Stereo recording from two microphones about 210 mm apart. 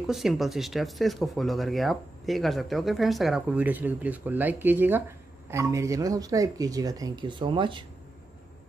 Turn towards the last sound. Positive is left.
turn(degrees=-25)  # may be behind; listen again after turning